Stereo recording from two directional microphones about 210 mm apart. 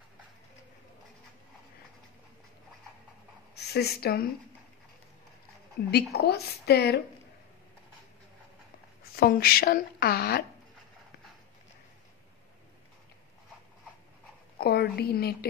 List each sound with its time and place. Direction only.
3.5 s a woman's voice: 50° left (ahead or behind)
5.8 s a woman's voice: 45° left (ahead or behind)
9.1 s a woman's voice: 45° left (ahead or behind)
14.6 s a woman's voice: 50° left (ahead or behind)